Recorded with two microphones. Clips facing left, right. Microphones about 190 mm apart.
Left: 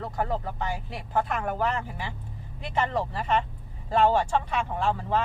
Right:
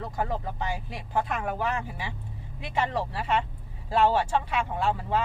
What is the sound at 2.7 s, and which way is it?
Speech, 10° right (ahead or behind).